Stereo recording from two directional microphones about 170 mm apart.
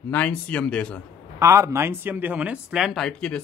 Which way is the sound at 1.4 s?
15° right (ahead or behind).